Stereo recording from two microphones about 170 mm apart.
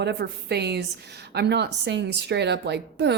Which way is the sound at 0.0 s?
75° right (ahead or behind).